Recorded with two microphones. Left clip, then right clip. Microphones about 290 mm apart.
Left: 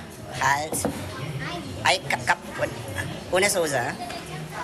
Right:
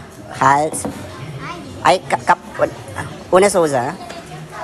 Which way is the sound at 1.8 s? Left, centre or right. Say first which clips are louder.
Right 9 dB; centre.